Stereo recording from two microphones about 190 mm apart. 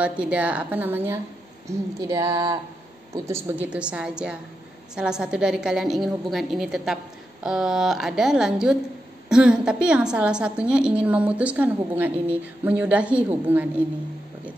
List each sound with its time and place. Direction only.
0.0 s a woman's voice: 5° right (ahead or behind)
3.7 s a woman's voice: 5° right (ahead or behind)